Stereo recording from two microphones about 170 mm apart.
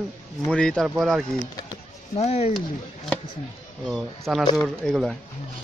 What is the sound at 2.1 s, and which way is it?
Speech, 40° left (ahead or behind).